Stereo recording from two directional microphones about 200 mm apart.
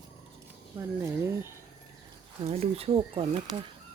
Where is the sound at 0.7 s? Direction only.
15° right (ahead or behind).